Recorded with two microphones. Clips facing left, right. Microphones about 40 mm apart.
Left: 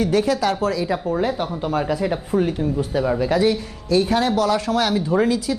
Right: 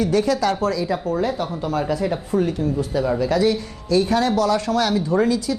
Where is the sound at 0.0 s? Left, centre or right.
Centre.